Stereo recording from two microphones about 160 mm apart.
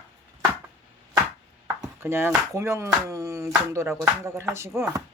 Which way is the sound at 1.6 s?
15° right (ahead or behind).